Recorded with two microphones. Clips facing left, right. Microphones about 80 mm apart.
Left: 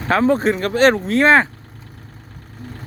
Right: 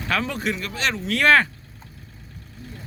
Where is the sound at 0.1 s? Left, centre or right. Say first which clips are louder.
Left 10 dB; left.